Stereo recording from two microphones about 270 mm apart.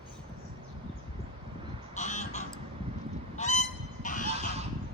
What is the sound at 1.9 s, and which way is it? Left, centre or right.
Vehicle, left.